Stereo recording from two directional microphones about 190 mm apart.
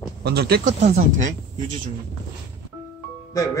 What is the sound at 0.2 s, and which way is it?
Speech, 60° right (ahead or behind).